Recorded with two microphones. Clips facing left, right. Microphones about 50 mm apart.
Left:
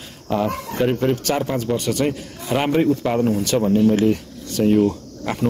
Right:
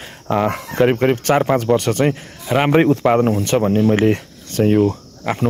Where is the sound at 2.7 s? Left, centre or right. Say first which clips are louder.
Right 5 dB; right.